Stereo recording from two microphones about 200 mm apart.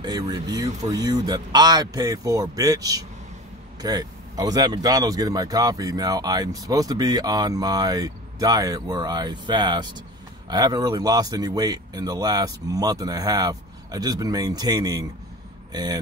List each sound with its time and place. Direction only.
0.0 s speech: 20° right (ahead or behind)